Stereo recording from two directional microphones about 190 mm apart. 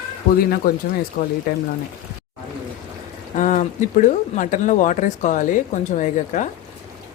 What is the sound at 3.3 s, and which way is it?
Speech, 40° left (ahead or behind).